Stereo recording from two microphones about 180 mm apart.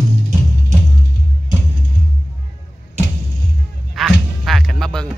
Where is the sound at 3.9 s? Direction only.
Centre (ahead or behind).